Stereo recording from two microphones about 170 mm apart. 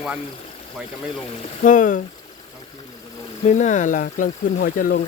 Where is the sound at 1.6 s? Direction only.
50° left (ahead or behind).